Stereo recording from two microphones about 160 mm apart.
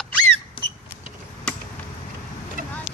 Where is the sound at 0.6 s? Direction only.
35° left (ahead or behind).